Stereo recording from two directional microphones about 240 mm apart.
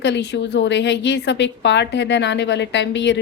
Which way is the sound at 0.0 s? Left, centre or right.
Left.